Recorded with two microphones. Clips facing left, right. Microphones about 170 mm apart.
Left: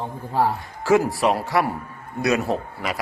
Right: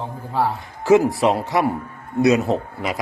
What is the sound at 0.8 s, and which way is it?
A man's voice, 20° right (ahead or behind).